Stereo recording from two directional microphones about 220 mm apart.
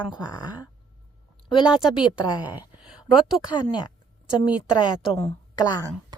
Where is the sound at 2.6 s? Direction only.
5° right (ahead or behind).